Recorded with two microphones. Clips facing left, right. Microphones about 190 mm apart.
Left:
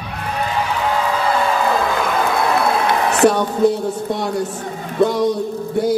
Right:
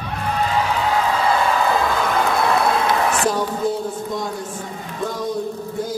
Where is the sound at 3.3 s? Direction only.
70° left (ahead or behind).